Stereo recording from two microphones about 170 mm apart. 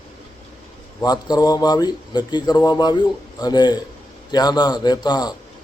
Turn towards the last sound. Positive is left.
turn(degrees=25)  # may be behind; listen again after turning